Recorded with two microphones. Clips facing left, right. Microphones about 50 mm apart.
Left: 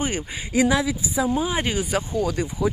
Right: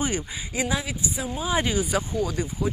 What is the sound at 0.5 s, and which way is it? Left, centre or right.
Speech, left.